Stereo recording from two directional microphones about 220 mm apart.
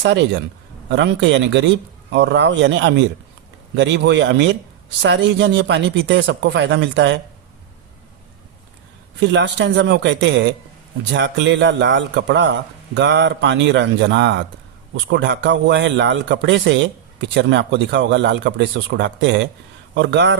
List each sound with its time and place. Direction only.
0.0 s a man's voice: 55° right (ahead or behind)
9.2 s a man's voice: 55° right (ahead or behind)